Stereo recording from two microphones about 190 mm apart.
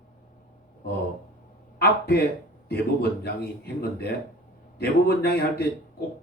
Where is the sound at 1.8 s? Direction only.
55° left (ahead or behind).